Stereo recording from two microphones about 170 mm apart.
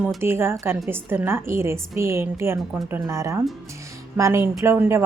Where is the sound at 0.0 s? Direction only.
10° right (ahead or behind).